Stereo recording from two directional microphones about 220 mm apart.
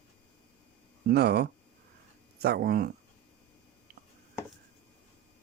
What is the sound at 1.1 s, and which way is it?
Speech, 45° right (ahead or behind).